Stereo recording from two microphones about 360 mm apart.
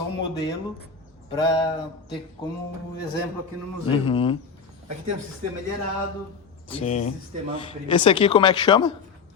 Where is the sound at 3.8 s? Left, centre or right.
Centre.